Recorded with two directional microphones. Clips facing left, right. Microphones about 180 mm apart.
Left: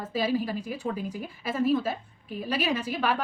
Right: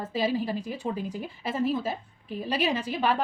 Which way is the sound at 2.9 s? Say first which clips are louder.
Right 1 dB; 20° right (ahead or behind).